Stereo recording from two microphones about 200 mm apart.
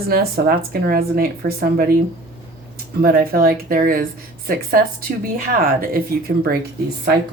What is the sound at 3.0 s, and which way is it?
A woman's voice, 50° right (ahead or behind).